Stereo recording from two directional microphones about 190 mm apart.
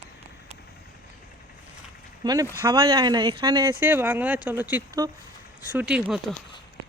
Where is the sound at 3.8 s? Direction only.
10° right (ahead or behind).